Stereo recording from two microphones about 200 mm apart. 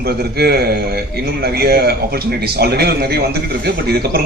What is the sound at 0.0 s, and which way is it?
A man's voice, 50° right (ahead or behind).